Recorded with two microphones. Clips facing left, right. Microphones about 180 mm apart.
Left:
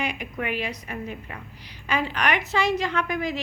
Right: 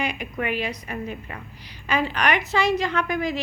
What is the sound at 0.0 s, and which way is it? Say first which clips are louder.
A woman's voice: right 2 dB; 35° right (ahead or behind).